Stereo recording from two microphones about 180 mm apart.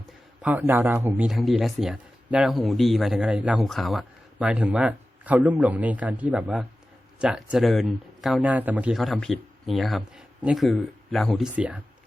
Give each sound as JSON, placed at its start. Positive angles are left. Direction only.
{"t": 0.4, "sound": "a man's voice", "side_deg": -10}